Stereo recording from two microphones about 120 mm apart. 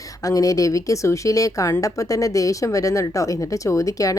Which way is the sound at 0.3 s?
30° left (ahead or behind).